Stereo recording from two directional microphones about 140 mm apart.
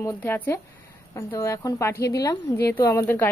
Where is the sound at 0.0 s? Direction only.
15° left (ahead or behind).